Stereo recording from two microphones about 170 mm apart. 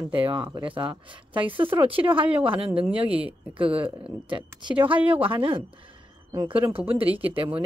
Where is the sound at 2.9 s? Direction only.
10° right (ahead or behind).